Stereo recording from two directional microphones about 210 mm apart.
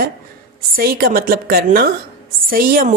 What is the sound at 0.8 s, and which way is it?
Speech, 45° right (ahead or behind).